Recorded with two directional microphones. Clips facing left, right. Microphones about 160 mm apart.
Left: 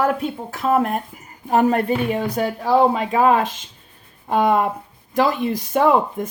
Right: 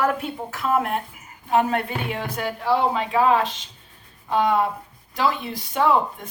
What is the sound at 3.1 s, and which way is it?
Speech, 50° left (ahead or behind).